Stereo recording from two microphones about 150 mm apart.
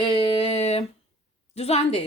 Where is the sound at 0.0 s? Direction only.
40° left (ahead or behind).